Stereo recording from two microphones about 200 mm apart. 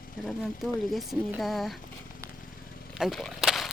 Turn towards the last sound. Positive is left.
turn(degrees=0)  # may be behind; listen again after turning